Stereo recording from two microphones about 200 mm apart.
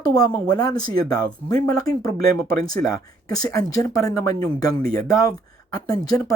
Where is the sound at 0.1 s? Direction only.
20° left (ahead or behind).